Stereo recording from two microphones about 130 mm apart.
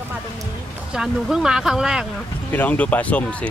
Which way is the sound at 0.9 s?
5° right (ahead or behind).